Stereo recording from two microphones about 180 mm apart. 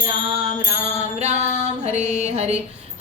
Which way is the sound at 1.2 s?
40° right (ahead or behind).